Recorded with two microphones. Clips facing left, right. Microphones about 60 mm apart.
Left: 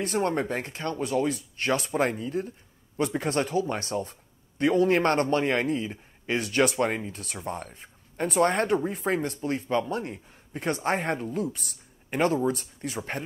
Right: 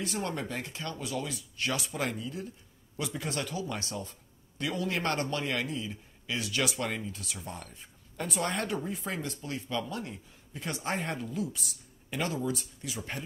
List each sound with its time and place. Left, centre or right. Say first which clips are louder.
0.0 s speech: left 8 dB; left